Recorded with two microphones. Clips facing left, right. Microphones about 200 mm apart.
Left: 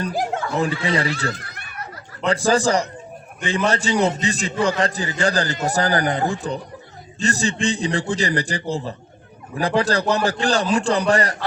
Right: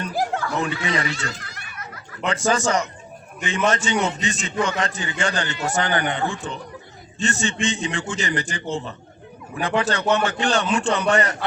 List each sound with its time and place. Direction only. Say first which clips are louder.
0.6 s a man's voice: left 3 dB; 35° left (ahead or behind)
1.3 s a sound: left 5 dB; 55° left (ahead or behind)
2.2 s a man's voice: left 3 dB; 35° left (ahead or behind)